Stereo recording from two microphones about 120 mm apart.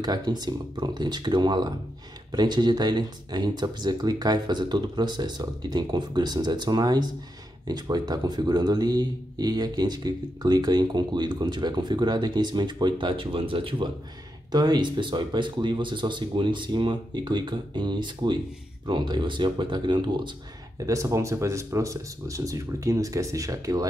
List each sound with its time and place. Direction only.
0.0 s speech: 35° right (ahead or behind)
14.5 s speech: 35° right (ahead or behind)
20.8 s speech: 25° right (ahead or behind)